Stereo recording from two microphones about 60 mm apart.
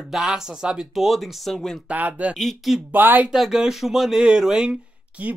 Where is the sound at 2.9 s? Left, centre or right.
Right.